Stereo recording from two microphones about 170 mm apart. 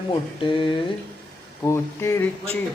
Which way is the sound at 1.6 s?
15° left (ahead or behind).